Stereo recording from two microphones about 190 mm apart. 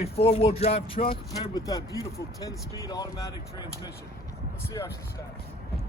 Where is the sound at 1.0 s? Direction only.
20° left (ahead or behind).